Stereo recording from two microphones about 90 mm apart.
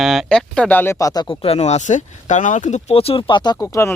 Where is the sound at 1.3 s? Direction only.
90° left.